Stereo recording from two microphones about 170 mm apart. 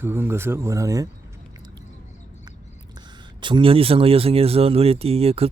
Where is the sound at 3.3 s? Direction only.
30° right (ahead or behind).